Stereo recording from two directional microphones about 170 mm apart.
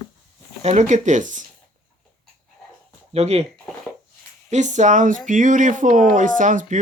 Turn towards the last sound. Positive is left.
turn(degrees=-45)  # may be behind; listen again after turning